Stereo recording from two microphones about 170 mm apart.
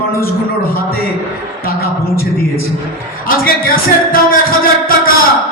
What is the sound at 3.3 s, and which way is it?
Speech, 55° left (ahead or behind).